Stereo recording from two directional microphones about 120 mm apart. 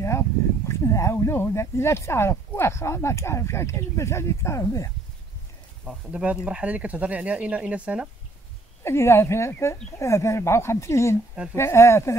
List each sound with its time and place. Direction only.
0.7 s speech: 25° left (ahead or behind)
5.9 s speech: 10° right (ahead or behind)
8.8 s speech: 20° left (ahead or behind)